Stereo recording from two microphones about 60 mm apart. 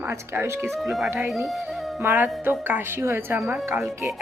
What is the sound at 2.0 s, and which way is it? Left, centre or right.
Speech, right.